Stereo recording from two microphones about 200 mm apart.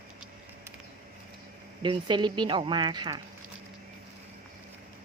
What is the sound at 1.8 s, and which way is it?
Speech, 25° right (ahead or behind).